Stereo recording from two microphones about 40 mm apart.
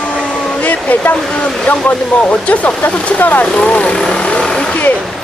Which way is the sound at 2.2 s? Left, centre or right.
Left.